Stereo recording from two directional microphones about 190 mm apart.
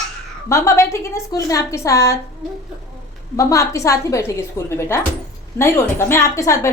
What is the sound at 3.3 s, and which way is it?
A woman's voice, 15° left (ahead or behind).